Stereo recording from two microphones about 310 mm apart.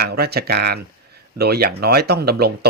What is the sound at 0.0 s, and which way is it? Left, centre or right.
Speech, right.